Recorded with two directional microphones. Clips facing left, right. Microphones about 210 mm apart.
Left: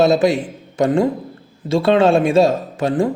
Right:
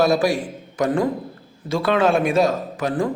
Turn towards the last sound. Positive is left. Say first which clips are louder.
# left 4 dB
turn(degrees=25)  # may be behind; listen again after turning